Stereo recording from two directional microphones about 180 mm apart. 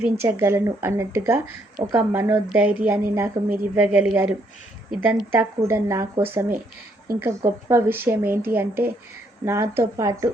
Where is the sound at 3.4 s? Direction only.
20° right (ahead or behind).